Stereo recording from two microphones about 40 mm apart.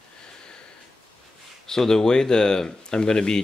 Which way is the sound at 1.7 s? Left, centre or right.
Centre.